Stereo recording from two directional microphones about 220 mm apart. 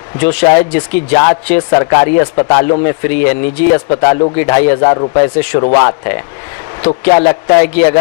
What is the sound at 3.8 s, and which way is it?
Speech, 25° left (ahead or behind).